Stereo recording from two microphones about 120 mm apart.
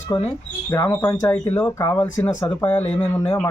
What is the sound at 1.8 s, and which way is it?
Speech, 35° left (ahead or behind).